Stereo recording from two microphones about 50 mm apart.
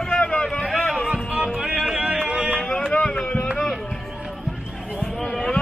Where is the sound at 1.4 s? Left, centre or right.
Centre.